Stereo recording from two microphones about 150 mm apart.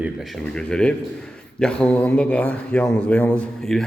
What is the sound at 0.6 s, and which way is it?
A man's voice, 5° left (ahead or behind).